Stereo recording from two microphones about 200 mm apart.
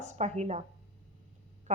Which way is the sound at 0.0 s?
35° right (ahead or behind).